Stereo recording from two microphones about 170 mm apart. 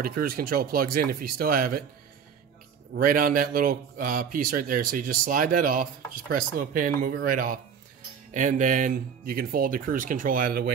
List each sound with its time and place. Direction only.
0.0 s a man's voice: 60° right (ahead or behind)
2.9 s a man's voice: 55° right (ahead or behind)